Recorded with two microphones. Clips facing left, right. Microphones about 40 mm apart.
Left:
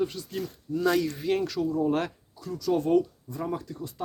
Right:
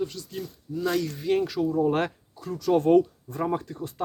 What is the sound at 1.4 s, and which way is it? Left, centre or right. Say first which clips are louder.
Speech: right 2 dB; centre.